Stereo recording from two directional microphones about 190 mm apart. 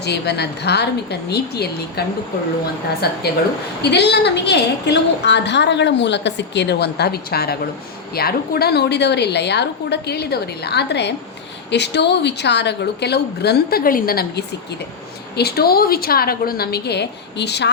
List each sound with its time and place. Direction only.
0.0 s a woman's voice: 60° left (ahead or behind)